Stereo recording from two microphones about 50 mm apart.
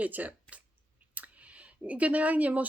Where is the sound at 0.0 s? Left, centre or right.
Right.